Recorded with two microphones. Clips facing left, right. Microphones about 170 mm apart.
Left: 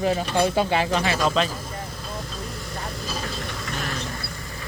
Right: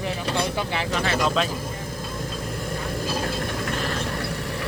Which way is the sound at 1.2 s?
Centre (ahead or behind).